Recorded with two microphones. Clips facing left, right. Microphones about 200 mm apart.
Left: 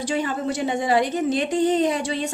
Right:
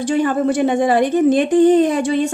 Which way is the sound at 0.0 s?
55° right (ahead or behind).